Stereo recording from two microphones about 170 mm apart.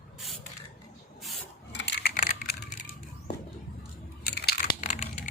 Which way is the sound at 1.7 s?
90° left.